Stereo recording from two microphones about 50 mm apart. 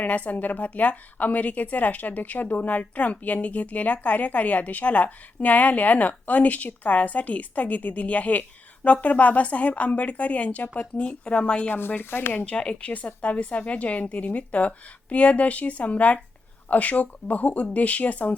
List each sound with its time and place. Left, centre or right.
0.0 s a woman's voice: left
11.7 s speech: left
12.5 s a woman's voice: left